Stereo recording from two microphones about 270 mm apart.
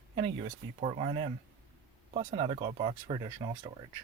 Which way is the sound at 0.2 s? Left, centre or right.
Right.